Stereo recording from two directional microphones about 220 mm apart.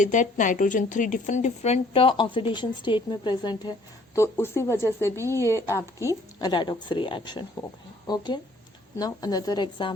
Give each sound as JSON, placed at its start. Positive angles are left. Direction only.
{"t": 0.0, "sound": "a woman's voice", "side_deg": 35}